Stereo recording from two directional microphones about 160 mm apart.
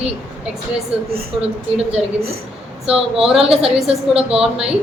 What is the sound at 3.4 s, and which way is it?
Speech, 40° right (ahead or behind).